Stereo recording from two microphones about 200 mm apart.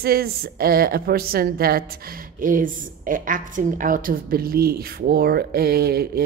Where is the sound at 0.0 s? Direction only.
50° right (ahead or behind).